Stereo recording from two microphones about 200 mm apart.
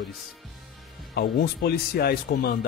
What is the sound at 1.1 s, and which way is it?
Speech, 50° left (ahead or behind).